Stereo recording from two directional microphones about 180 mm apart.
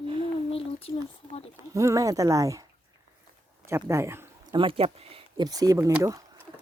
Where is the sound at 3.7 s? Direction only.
15° right (ahead or behind).